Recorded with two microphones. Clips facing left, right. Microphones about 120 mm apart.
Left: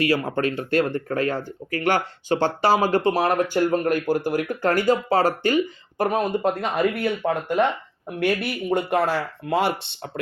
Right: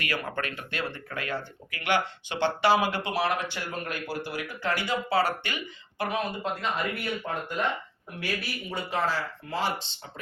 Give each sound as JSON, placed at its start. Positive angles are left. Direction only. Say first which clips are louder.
{"t": 0.0, "sound": "speech", "louder": "left 10 dB", "side_deg": 35}